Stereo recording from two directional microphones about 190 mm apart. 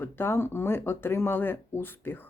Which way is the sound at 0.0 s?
10° left (ahead or behind).